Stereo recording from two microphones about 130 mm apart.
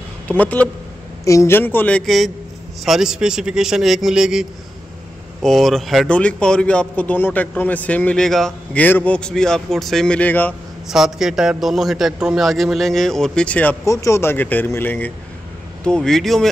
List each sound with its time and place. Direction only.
0.3 s speech: 10° left (ahead or behind)
1.2 s a man's voice: 25° left (ahead or behind)
10.9 s a man's voice: 5° right (ahead or behind)
13.8 s a man's voice: 20° left (ahead or behind); by 16.4 s 5° left (ahead or behind)